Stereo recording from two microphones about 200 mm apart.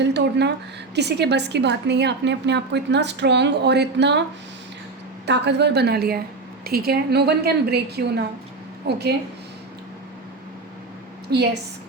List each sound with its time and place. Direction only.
0.0 s a woman's voice: 60° right (ahead or behind)
5.2 s a woman's voice: 60° right (ahead or behind)
11.3 s a woman's voice: 55° right (ahead or behind)